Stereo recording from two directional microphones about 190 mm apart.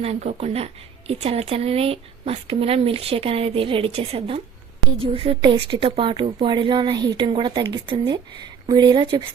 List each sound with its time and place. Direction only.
0.0 s a woman's voice: 35° right (ahead or behind)